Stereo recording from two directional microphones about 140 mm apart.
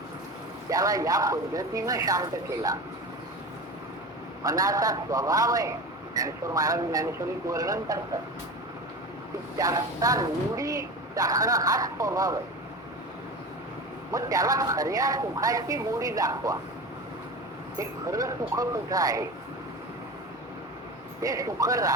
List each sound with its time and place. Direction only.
0.7 s speech: 25° right (ahead or behind)
4.4 s speech: 25° right (ahead or behind)
9.6 s speech: 25° right (ahead or behind)
14.1 s speech: 25° right (ahead or behind)
17.7 s speech: 25° right (ahead or behind)
21.2 s speech: 25° right (ahead or behind)